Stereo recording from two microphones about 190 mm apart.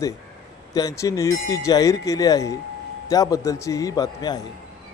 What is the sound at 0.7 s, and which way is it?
Speech, 15° left (ahead or behind).